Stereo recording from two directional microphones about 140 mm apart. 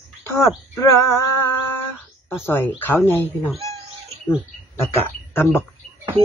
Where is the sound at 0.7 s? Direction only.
20° left (ahead or behind).